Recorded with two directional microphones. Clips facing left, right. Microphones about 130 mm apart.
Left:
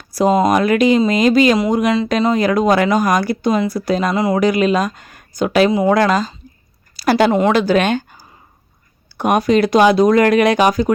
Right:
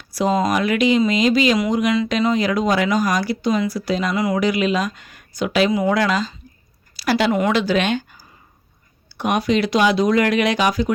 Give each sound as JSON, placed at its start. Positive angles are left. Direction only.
{"t": 0.1, "sound": "speech", "side_deg": 45}
{"t": 1.7, "sound": "speech", "side_deg": 40}
{"t": 2.3, "sound": "speech", "side_deg": 50}
{"t": 4.1, "sound": "a woman's voice", "side_deg": 30}
{"t": 4.4, "sound": "speech", "side_deg": 45}
{"t": 6.9, "sound": "a sound", "side_deg": 45}
{"t": 7.3, "sound": "a woman's voice", "side_deg": 30}
{"t": 7.5, "sound": "speech", "side_deg": 50}